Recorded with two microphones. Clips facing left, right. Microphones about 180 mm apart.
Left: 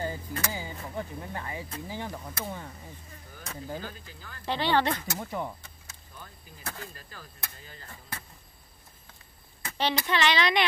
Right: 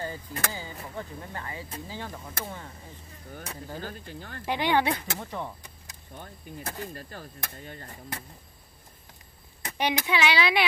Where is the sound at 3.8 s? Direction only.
50° right (ahead or behind).